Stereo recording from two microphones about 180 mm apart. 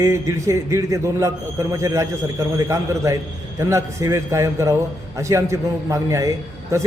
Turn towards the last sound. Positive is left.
turn(degrees=-15)  # may be behind; listen again after turning